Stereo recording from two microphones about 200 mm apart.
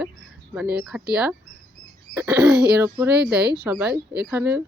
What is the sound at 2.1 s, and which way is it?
Cough, 15° right (ahead or behind).